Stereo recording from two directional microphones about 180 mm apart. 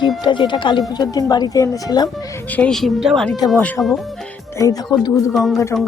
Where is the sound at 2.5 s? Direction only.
5° left (ahead or behind).